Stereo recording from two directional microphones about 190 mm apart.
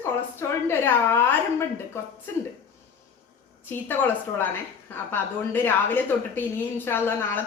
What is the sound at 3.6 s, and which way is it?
A woman's voice, 10° left (ahead or behind).